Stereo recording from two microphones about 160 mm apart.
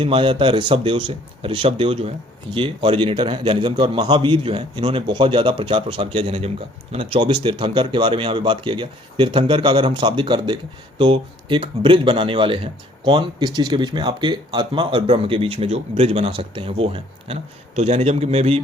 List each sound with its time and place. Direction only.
0.0 s a man's voice: 30° right (ahead or behind)